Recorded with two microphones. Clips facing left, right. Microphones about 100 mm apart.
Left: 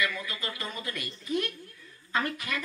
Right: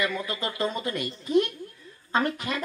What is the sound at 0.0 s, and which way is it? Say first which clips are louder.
Speech: right 4 dB; 25° right (ahead or behind).